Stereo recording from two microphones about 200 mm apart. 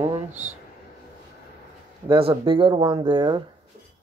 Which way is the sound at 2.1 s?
25° right (ahead or behind).